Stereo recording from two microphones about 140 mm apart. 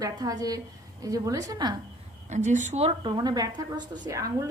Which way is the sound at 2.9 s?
30° right (ahead or behind).